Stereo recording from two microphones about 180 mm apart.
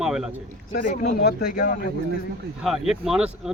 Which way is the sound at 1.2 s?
60° left (ahead or behind).